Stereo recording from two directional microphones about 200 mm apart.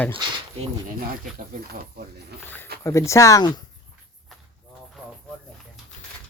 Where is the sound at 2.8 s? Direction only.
15° left (ahead or behind).